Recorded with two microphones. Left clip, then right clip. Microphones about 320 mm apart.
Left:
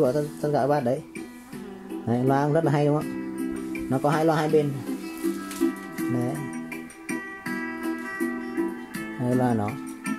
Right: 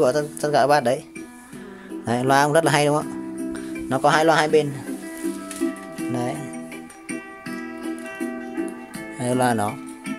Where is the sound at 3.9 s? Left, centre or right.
Right.